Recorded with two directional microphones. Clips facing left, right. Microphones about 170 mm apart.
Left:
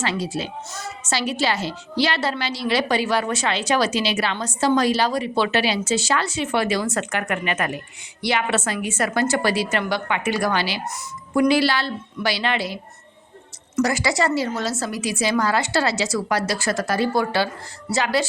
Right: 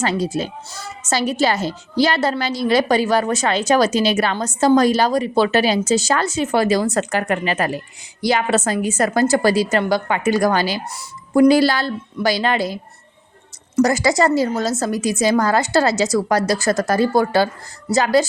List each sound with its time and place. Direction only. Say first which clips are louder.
0.0 s a woman's voice: right 5 dB; 45° right (ahead or behind)